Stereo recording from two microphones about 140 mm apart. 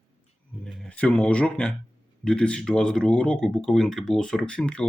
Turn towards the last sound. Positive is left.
turn(degrees=5)  # may be behind; listen again after turning